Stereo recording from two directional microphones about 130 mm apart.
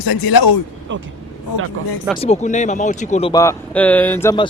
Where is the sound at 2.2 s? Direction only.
60° left (ahead or behind).